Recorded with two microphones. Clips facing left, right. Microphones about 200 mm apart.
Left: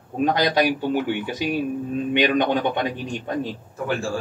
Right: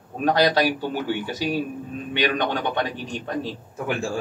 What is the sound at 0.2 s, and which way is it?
Speech, 15° left (ahead or behind).